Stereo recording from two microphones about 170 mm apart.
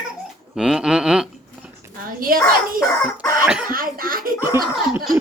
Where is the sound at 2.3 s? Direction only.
55° right (ahead or behind).